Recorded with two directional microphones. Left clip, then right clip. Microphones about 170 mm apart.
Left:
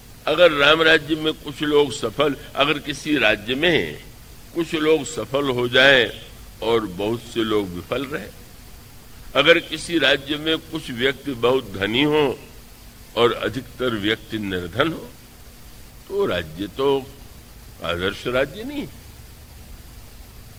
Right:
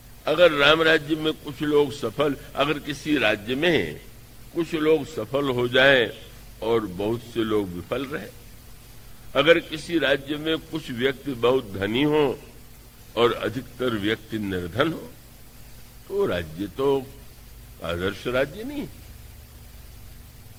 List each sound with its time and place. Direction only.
0.3 s a man's voice: 35° left (ahead or behind)
9.3 s a man's voice: 30° left (ahead or behind)
16.1 s a man's voice: 35° left (ahead or behind)